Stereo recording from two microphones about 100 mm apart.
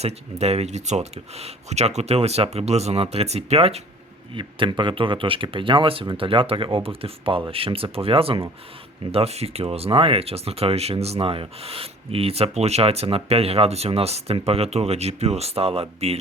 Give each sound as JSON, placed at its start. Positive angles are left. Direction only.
{"t": 0.0, "sound": "speech", "side_deg": -90}
{"t": 4.4, "sound": "speech", "side_deg": -55}
{"t": 9.1, "sound": "speech", "side_deg": -90}